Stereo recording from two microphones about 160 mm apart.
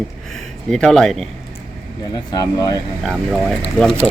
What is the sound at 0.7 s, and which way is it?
Speech, 5° left (ahead or behind).